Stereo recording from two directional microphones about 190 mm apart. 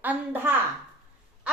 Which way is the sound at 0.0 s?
10° right (ahead or behind).